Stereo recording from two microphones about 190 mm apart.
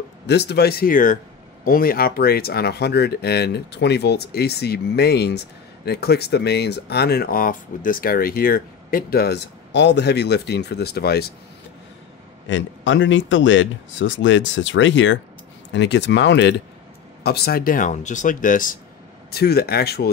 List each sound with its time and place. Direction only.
0.3 s speech: 60° left (ahead or behind)
12.4 s speech: 80° left; by 18.8 s 45° left (ahead or behind)
19.3 s speech: 55° left (ahead or behind)